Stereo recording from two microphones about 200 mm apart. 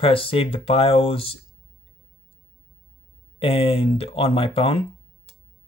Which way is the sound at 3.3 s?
30° left (ahead or behind).